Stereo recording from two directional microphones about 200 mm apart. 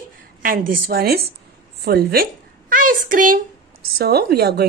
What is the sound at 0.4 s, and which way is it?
A woman's voice, 45° right (ahead or behind).